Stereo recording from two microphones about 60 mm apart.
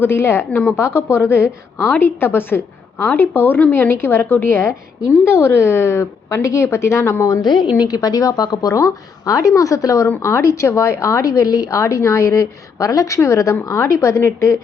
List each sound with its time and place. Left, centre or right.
0.0 s a woman's voice: left
7.9 s a woman's voice: left